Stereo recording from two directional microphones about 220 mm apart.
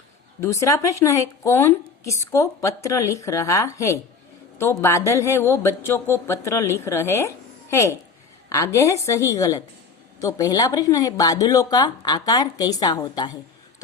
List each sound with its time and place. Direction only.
0.4 s a woman's voice: 15° left (ahead or behind)